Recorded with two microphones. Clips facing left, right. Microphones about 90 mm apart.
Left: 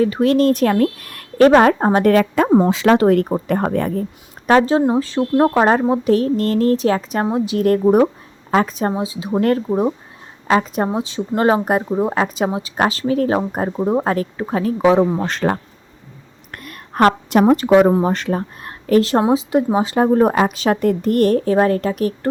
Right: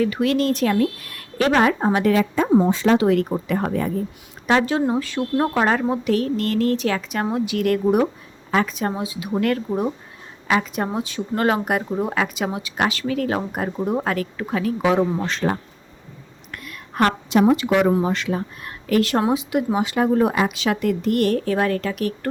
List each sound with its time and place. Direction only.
0.0 s a woman's voice: 35° left (ahead or behind); by 2.5 s 65° left (ahead or behind)
2.6 s speech: 80° left
3.0 s speech: 45° left (ahead or behind)
4.4 s a woman's voice: 35° left (ahead or behind)
10.5 s speech: 35° left (ahead or behind)
14.9 s speech: 25° left (ahead or behind)
15.2 s speech: 45° left (ahead or behind)
16.5 s a sound: 45° left (ahead or behind)
17.7 s speech: 30° left (ahead or behind)